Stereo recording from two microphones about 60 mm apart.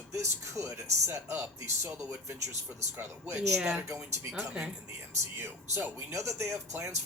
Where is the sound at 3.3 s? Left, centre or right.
Centre.